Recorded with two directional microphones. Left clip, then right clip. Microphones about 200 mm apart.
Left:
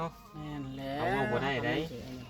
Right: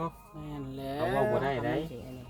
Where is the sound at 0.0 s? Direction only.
55° right (ahead or behind).